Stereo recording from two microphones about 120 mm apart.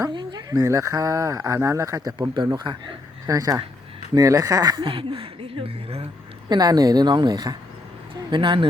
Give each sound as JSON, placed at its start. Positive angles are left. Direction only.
{"t": 0.0, "sound": "speech", "side_deg": -35}
{"t": 3.2, "sound": "speech", "side_deg": -30}
{"t": 6.5, "sound": "speech", "side_deg": -35}